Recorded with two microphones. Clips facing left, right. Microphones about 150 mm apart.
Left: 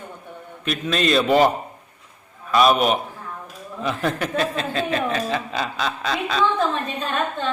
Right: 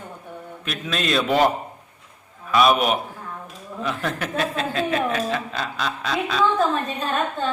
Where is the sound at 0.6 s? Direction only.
Centre (ahead or behind).